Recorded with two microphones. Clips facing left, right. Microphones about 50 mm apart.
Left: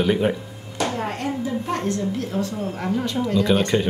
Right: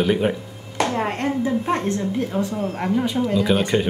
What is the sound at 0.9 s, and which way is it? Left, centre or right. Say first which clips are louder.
A woman's voice: right 3 dB; right.